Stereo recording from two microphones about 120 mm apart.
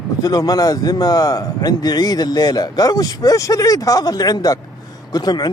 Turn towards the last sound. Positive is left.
turn(degrees=35)  # may be behind; listen again after turning